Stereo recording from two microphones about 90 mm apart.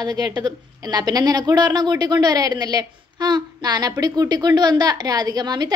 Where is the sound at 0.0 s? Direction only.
45° right (ahead or behind).